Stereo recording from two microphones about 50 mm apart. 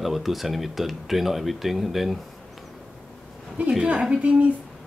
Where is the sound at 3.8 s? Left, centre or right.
Right.